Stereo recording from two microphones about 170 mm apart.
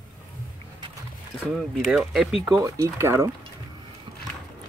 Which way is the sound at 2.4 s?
20° right (ahead or behind).